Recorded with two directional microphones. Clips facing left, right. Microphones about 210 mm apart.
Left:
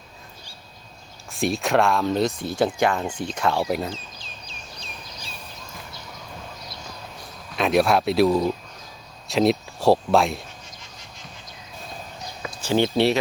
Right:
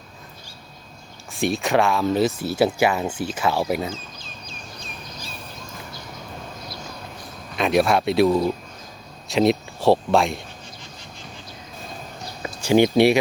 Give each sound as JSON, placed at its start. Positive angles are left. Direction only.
{"t": 1.3, "sound": "speech", "side_deg": 0}
{"t": 4.4, "sound": "a sound", "side_deg": -45}
{"t": 7.5, "sound": "speech", "side_deg": 0}
{"t": 12.6, "sound": "speech", "side_deg": -15}